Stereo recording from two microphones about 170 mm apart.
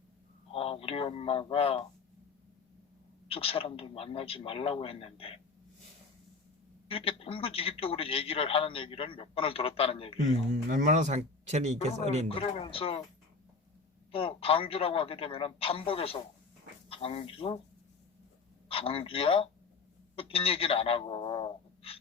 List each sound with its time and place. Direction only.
0.5 s speech: 35° left (ahead or behind)
3.2 s a man's voice: 35° left (ahead or behind)
6.8 s a man's voice: 35° left (ahead or behind)
10.5 s speech: 45° right (ahead or behind)
12.3 s a man's voice: 30° left (ahead or behind)
14.1 s a man's voice: 35° left (ahead or behind)
18.7 s a man's voice: 35° left (ahead or behind)